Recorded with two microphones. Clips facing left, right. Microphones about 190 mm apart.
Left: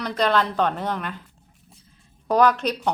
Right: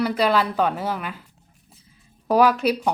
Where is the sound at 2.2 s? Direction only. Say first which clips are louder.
Right 2 dB; 5° right (ahead or behind).